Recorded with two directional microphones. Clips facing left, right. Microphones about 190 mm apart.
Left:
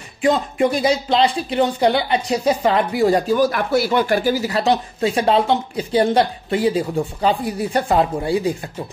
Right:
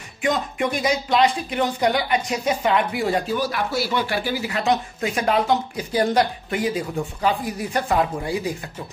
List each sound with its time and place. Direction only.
0.2 s speech: 30° left (ahead or behind)